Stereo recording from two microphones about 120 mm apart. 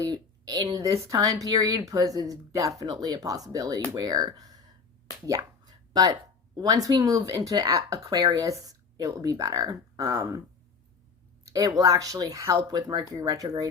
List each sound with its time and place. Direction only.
0.1 s speech: 35° right (ahead or behind)
11.4 s speech: 30° right (ahead or behind)